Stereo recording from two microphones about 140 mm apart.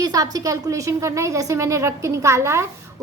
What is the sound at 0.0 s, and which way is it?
A woman's voice, 25° right (ahead or behind).